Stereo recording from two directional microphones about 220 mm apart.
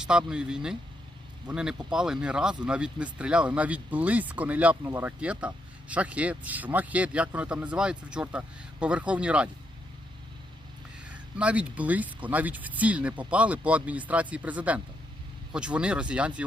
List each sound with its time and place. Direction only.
0.0 s speech: 5° right (ahead or behind)
11.1 s speech: 5° right (ahead or behind)